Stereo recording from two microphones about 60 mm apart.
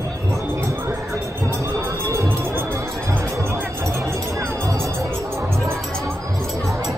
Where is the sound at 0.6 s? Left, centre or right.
Right.